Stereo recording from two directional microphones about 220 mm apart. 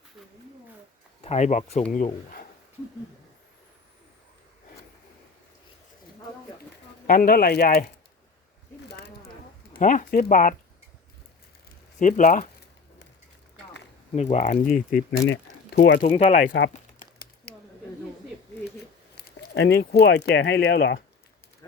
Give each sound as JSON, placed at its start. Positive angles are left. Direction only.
{"t": 1.2, "sound": "speech", "side_deg": 30}
{"t": 7.1, "sound": "speech", "side_deg": 45}
{"t": 8.9, "sound": "a sound", "side_deg": 50}
{"t": 9.8, "sound": "speech", "side_deg": 35}
{"t": 11.9, "sound": "speech", "side_deg": 35}
{"t": 14.2, "sound": "speech", "side_deg": 30}
{"t": 16.0, "sound": "speech", "side_deg": 30}
{"t": 16.5, "sound": "speech", "side_deg": 55}
{"t": 16.7, "sound": "a sound", "side_deg": 40}
{"t": 19.1, "sound": "speech", "side_deg": 45}